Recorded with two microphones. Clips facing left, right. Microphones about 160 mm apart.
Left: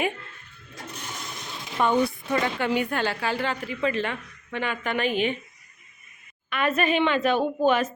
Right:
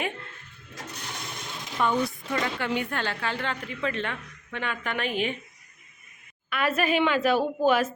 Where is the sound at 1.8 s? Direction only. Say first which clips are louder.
Left 3 dB; 35° left (ahead or behind).